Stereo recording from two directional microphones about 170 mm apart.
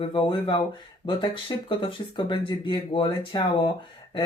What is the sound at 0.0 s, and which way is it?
Speech, 30° left (ahead or behind).